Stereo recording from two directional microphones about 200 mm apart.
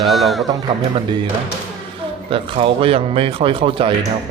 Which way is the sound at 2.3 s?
25° right (ahead or behind).